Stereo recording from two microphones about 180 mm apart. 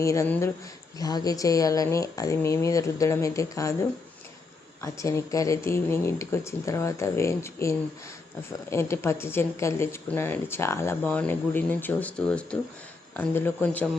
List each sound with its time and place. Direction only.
0.0 s speech: 15° left (ahead or behind)
4.8 s speech: 15° left (ahead or behind)